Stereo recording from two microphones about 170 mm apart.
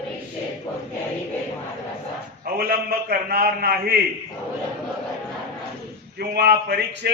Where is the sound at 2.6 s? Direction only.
60° right (ahead or behind).